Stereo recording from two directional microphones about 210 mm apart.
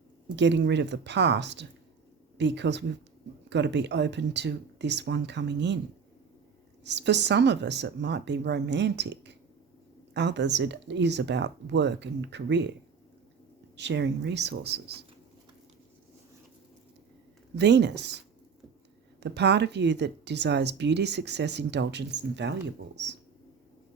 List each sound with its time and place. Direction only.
0.3 s speech: 55° right (ahead or behind)
6.8 s speech: 55° right (ahead or behind)
13.7 s speech: 55° right (ahead or behind)
17.6 s speech: 55° right (ahead or behind)
19.2 s speech: 55° right (ahead or behind)